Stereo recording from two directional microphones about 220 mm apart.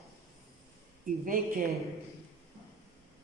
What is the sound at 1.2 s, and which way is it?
Speech, 40° right (ahead or behind).